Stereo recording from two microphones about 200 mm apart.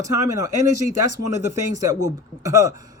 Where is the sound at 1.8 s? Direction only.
15° right (ahead or behind).